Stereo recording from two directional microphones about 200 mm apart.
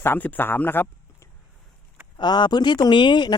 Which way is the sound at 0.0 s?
10° left (ahead or behind).